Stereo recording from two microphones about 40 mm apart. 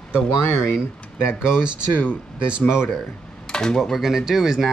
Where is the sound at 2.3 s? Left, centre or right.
Right.